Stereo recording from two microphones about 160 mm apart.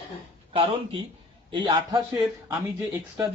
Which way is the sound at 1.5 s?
30° right (ahead or behind).